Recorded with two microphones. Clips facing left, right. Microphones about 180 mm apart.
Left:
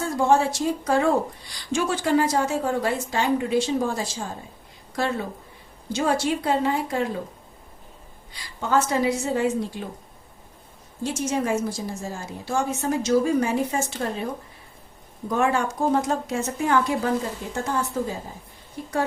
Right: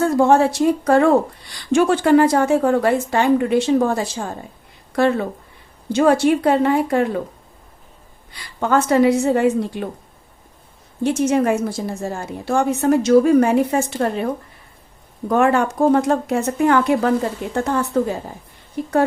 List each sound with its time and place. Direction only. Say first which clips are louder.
0.0 s a woman's voice: right 6 dB; 60° right (ahead or behind)
8.3 s a woman's voice: right 5 dB; 60° right (ahead or behind)
11.0 s a woman's voice: right 8 dB; 60° right (ahead or behind)